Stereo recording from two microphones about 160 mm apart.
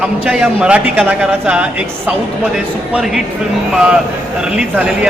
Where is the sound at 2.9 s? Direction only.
Centre (ahead or behind).